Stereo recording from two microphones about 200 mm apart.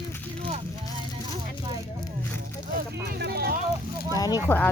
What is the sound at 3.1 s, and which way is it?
Speech, 55° right (ahead or behind).